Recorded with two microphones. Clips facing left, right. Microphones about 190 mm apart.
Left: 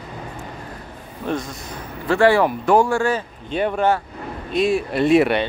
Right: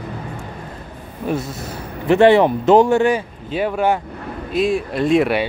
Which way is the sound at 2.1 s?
20° right (ahead or behind).